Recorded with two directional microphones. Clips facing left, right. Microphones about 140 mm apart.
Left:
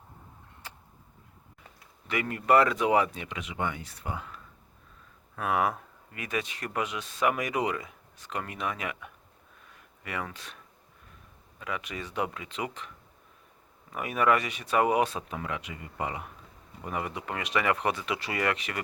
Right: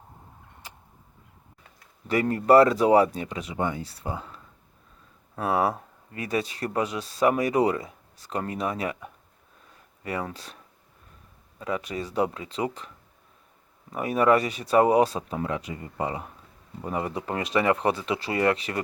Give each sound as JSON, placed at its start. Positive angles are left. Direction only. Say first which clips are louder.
{"t": 0.6, "sound": "vehicle", "louder": "even", "side_deg": -15}
{"t": 2.0, "sound": "speech", "louder": "right 6 dB", "side_deg": -35}
{"t": 5.4, "sound": "speech", "louder": "right 3 dB", "side_deg": -30}
{"t": 11.6, "sound": "speech", "louder": "right 6 dB", "side_deg": -35}
{"t": 13.9, "sound": "speech", "louder": "right 5 dB", "side_deg": -35}